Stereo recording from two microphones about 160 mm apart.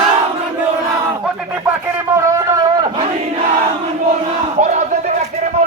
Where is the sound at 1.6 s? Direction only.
10° right (ahead or behind).